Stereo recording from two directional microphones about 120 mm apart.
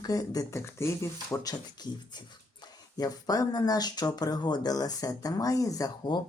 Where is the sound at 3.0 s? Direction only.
30° left (ahead or behind).